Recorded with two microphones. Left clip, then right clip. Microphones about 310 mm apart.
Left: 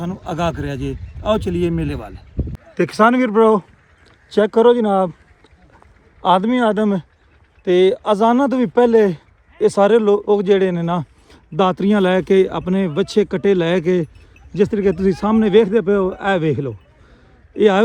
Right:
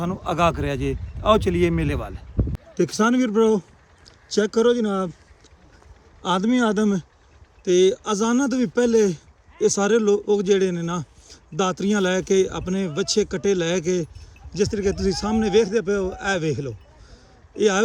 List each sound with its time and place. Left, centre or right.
0.0 s speech: centre
6.2 s speech: centre